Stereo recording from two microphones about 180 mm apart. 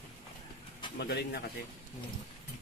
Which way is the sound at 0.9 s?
65° left (ahead or behind).